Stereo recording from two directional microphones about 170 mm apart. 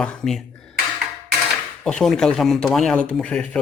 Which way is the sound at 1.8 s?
5° left (ahead or behind).